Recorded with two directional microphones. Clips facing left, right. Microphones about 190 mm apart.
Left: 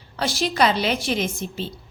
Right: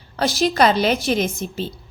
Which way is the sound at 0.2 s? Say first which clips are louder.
Right 4 dB; 40° right (ahead or behind).